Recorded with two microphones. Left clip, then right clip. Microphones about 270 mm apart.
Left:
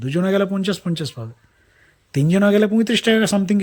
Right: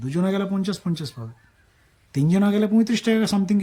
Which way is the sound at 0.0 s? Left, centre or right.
Centre.